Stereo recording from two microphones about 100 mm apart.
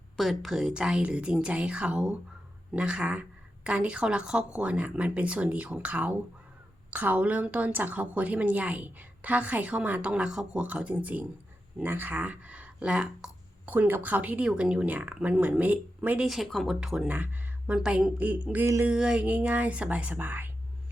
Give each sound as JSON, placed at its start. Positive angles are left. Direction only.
{"t": 0.2, "sound": "a woman's voice", "side_deg": 0}
{"t": 13.7, "sound": "a woman's voice", "side_deg": -20}
{"t": 16.2, "sound": "a woman's voice", "side_deg": 0}
{"t": 18.6, "sound": "a sound", "side_deg": -30}
{"t": 18.9, "sound": "a woman's voice", "side_deg": -10}